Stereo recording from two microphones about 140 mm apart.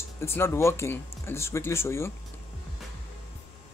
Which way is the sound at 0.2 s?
15° left (ahead or behind).